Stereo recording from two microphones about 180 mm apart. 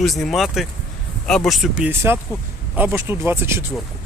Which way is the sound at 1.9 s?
15° right (ahead or behind).